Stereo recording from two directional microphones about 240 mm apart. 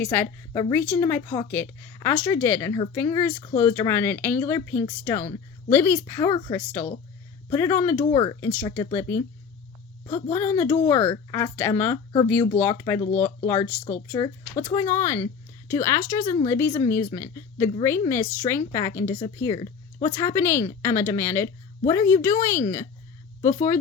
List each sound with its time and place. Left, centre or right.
0.0 s speech: centre
10.1 s a woman's voice: left
10.3 s speech: centre